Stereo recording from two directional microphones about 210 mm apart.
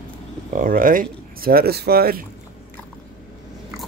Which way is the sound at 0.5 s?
40° right (ahead or behind).